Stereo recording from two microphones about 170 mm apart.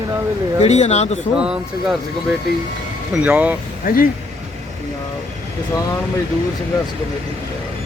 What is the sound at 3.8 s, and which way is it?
Speech, 55° left (ahead or behind).